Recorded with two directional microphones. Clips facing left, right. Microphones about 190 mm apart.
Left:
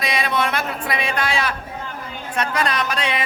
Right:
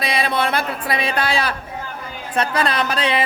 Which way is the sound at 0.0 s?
30° right (ahead or behind).